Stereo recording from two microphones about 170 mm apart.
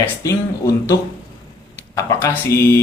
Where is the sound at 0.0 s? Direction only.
20° left (ahead or behind).